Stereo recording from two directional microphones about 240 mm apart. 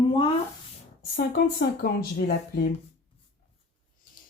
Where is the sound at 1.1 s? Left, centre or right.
Left.